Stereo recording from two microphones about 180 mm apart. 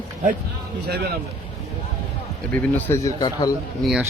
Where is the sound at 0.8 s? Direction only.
65° right (ahead or behind).